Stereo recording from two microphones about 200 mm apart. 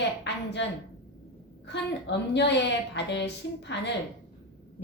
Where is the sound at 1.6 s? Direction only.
60° left (ahead or behind).